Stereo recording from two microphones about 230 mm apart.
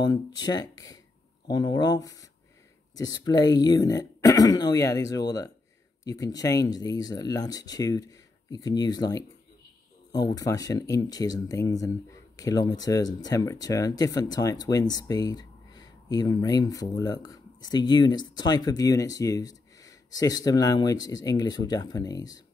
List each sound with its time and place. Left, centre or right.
0.0 s speech: centre